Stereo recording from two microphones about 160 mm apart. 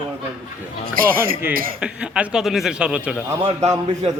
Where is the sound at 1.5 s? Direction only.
65° right (ahead or behind).